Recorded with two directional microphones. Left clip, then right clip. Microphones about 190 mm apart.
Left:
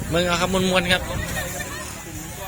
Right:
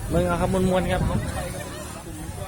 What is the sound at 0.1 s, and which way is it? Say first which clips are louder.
Speech: left 2 dB; centre (ahead or behind).